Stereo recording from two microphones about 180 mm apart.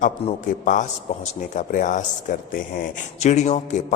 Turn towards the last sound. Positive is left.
turn(degrees=40)  # may be behind; listen again after turning